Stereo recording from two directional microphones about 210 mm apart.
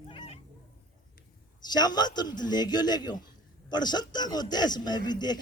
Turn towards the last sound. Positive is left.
turn(degrees=20)  # may be behind; listen again after turning